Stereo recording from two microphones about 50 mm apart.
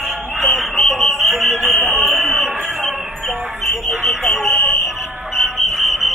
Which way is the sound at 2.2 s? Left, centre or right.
Left.